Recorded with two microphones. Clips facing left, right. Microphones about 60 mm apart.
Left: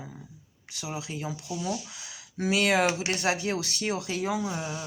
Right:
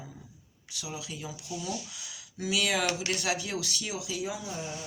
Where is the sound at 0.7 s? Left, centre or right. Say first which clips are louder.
Left 4 dB; left.